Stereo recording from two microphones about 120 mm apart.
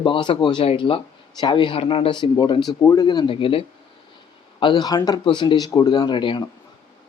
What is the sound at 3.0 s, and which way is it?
Speech, 40° left (ahead or behind).